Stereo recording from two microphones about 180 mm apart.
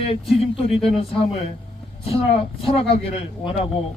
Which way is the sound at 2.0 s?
30° left (ahead or behind).